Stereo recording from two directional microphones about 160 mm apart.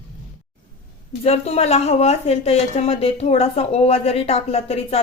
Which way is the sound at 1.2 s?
40° left (ahead or behind).